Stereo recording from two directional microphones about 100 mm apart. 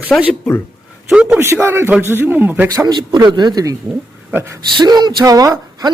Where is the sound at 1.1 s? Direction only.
10° right (ahead or behind).